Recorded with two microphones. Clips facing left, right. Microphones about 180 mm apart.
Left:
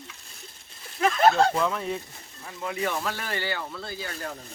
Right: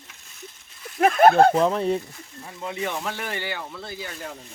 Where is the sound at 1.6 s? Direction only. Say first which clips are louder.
Right 6 dB; 35° right (ahead or behind); by 4.4 s 10° right (ahead or behind).